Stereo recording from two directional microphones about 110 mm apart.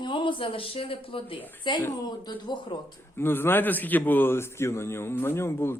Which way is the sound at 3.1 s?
20° left (ahead or behind).